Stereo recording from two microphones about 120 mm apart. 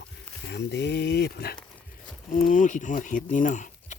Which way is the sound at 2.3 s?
90° left.